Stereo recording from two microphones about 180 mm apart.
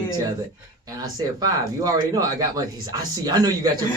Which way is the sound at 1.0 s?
20° right (ahead or behind).